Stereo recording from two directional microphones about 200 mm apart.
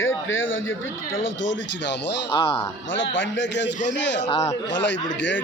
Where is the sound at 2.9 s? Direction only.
65° left (ahead or behind).